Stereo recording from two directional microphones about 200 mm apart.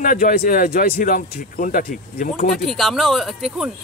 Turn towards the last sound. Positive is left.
turn(degrees=0)  # may be behind; listen again after turning